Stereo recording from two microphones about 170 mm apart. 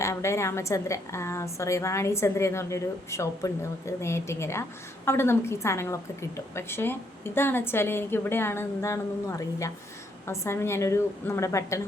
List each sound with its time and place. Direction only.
0.0 s a woman's voice: 15° left (ahead or behind)